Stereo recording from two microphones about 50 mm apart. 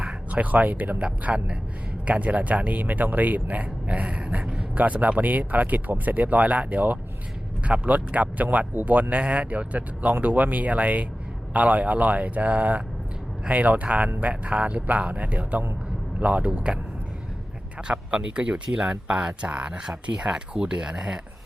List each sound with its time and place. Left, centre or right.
0.3 s speech: right
1.0 s a man's voice: right
17.8 s a man's voice: right